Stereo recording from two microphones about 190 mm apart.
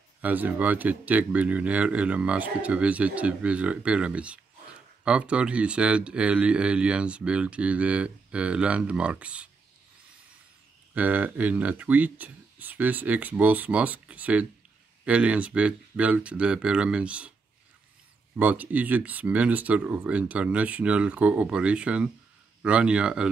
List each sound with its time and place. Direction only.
0.2 s speech: 10° right (ahead or behind)
11.0 s speech: 10° right (ahead or behind)
18.4 s speech: 10° right (ahead or behind)